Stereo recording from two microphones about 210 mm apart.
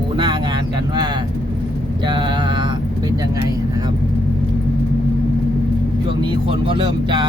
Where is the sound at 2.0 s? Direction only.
20° right (ahead or behind).